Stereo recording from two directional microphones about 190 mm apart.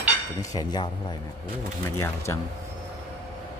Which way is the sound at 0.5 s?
20° left (ahead or behind).